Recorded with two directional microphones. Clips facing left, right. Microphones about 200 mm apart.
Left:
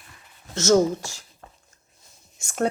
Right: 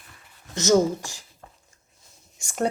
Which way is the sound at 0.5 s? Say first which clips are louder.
Left 1 dB; 15° right (ahead or behind).